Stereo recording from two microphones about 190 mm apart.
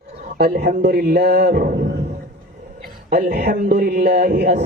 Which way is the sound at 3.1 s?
60° right (ahead or behind).